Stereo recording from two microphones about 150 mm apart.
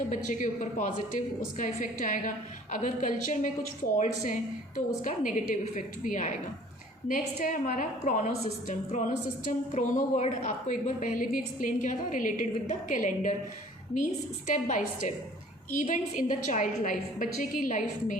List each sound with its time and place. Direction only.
0.3 s a woman's voice: 55° left (ahead or behind)